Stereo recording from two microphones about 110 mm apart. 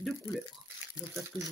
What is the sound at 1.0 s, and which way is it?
Speech, 25° left (ahead or behind).